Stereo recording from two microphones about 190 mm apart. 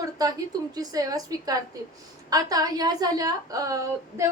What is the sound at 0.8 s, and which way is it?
A woman's voice, 20° right (ahead or behind).